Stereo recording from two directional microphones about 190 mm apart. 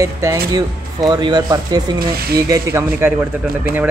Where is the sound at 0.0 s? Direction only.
15° right (ahead or behind).